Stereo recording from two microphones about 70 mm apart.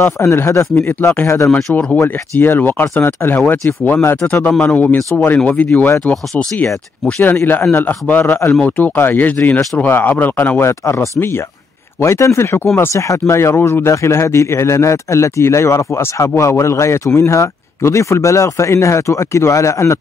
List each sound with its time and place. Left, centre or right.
0.4 s speech: left
0.7 s speech: left
1.2 s speech: left
2.0 s speech: left
7.2 s speech: left
10.6 s speech: left